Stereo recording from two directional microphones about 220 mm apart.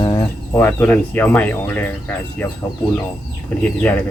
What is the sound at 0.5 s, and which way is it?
Speech, 5° left (ahead or behind).